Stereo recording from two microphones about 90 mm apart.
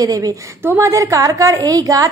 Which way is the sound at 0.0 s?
45° right (ahead or behind).